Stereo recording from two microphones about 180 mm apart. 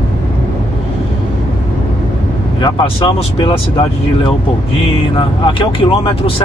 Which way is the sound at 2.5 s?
25° left (ahead or behind).